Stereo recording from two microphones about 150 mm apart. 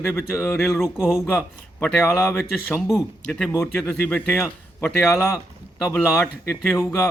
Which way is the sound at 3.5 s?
15° left (ahead or behind).